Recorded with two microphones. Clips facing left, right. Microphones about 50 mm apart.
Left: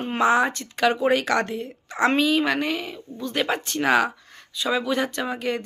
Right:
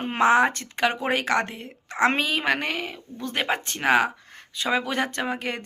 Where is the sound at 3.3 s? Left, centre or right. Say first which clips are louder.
Left 2 dB; right.